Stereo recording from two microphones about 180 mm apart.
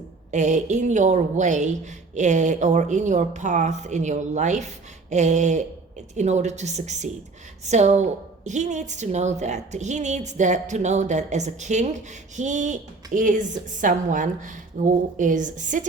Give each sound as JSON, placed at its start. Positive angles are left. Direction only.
{"t": 0.3, "sound": "a woman's voice", "side_deg": -40}